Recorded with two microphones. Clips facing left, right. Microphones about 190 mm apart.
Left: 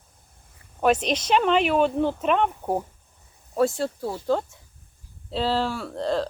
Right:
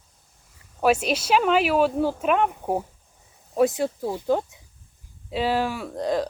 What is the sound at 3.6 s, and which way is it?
Speech, 15° right (ahead or behind).